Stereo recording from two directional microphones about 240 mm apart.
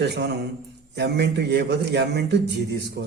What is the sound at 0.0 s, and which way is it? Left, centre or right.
A man's voice, right.